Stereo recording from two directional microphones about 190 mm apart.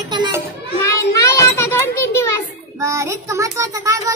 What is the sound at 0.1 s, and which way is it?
Children playing, 25° right (ahead or behind).